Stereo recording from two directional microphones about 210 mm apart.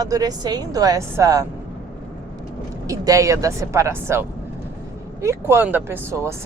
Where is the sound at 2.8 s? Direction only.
15° right (ahead or behind).